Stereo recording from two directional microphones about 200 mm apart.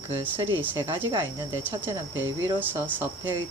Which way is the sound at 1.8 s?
10° right (ahead or behind).